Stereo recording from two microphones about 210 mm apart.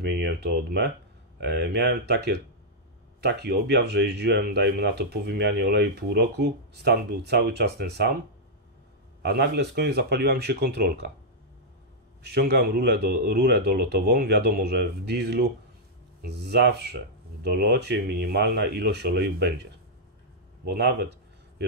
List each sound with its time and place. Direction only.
0.0 s speech: 50° right (ahead or behind)
9.2 s speech: 55° right (ahead or behind)
12.2 s speech: 50° right (ahead or behind)
20.6 s speech: 50° right (ahead or behind)